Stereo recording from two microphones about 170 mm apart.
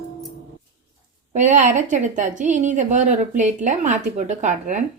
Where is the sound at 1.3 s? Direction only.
45° right (ahead or behind).